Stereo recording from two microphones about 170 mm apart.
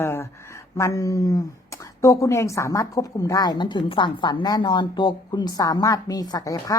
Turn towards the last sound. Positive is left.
turn(degrees=20)  # may be behind; listen again after turning